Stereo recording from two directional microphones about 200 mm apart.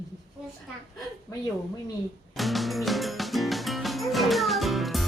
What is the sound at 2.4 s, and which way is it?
Music, centre (ahead or behind).